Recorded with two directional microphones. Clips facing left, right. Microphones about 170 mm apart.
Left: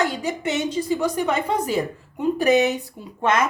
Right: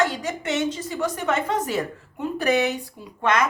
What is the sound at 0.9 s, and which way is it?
A woman's voice, 15° left (ahead or behind).